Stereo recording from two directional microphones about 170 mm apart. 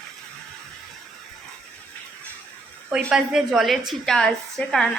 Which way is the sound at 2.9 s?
5° right (ahead or behind).